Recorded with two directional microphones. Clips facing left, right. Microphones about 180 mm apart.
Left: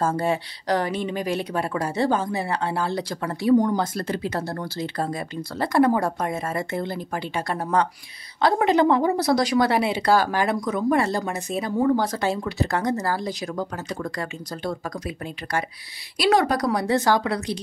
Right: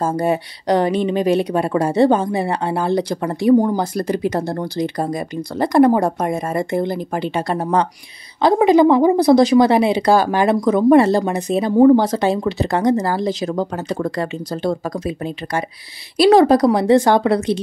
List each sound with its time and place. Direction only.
0.0 s a woman's voice: 15° right (ahead or behind)